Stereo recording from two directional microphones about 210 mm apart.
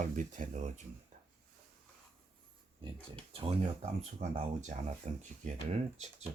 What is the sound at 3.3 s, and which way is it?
Speech, 25° right (ahead or behind).